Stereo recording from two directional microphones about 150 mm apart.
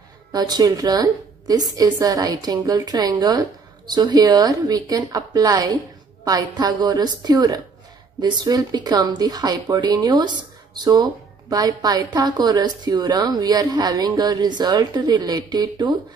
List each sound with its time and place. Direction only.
0.3 s speech: 25° right (ahead or behind)